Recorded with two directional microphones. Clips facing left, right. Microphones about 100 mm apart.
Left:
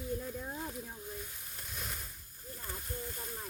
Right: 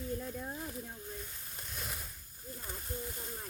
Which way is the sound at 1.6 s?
Centre (ahead or behind).